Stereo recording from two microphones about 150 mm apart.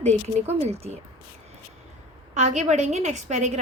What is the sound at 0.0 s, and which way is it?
Speech, 45° right (ahead or behind).